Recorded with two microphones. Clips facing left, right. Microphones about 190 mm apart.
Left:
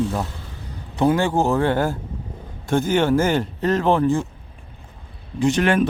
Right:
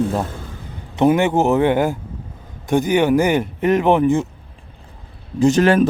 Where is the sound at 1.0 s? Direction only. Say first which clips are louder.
Right 3 dB; 20° right (ahead or behind).